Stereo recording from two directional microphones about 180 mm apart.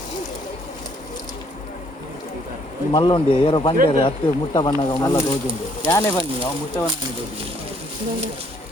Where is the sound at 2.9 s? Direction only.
30° left (ahead or behind).